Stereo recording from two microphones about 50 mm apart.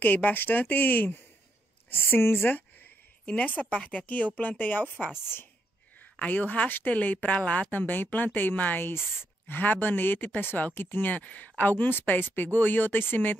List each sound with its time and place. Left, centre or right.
0.0 s speech: left
2.0 s a woman's voice: left
3.3 s speech: left
5.2 s a woman's voice: left
5.9 s a woman's voice: left
7.7 s speech: left